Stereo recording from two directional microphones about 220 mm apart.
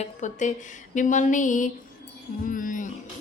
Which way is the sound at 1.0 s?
35° left (ahead or behind).